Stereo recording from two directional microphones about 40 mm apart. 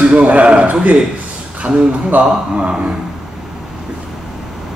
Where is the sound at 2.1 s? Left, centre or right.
Right.